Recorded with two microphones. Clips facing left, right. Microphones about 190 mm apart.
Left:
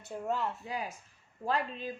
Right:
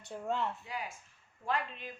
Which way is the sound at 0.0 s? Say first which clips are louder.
Left 1 dB; 5° left (ahead or behind).